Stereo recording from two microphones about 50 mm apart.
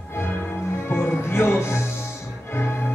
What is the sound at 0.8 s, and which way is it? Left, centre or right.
Music, left.